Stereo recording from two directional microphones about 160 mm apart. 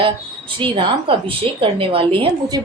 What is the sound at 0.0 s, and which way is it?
A woman's voice, 30° right (ahead or behind).